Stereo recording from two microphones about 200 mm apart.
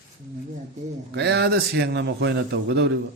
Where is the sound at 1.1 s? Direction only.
55° right (ahead or behind).